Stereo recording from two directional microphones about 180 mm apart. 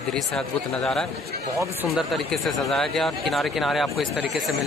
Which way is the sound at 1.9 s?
Centre (ahead or behind).